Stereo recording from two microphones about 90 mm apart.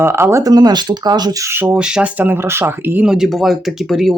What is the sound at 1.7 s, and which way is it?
Speech, 10° right (ahead or behind).